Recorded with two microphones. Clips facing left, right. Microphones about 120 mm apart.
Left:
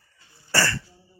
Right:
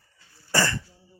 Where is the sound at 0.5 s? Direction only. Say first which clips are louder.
Even; 20° right (ahead or behind).